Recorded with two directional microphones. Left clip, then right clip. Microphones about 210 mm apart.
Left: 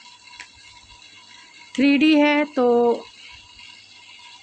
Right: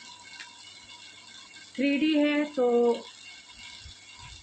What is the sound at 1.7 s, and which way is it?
Speech, 55° left (ahead or behind).